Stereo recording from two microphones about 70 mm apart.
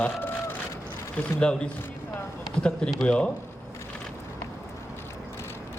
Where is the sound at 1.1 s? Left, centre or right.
Centre.